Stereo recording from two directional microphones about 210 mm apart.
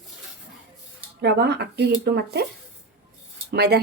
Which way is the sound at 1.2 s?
50° right (ahead or behind).